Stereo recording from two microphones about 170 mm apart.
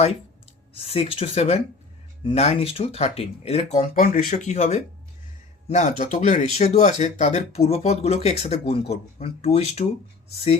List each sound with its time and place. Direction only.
0.7 s speech: 35° left (ahead or behind)